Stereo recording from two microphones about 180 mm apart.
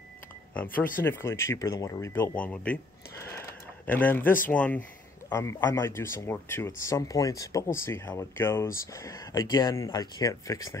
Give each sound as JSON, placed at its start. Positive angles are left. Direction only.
{"t": 0.7, "sound": "speech", "side_deg": 50}
{"t": 1.0, "sound": "speech", "side_deg": 15}
{"t": 3.3, "sound": "a sound", "side_deg": 10}
{"t": 4.5, "sound": "speech", "side_deg": 10}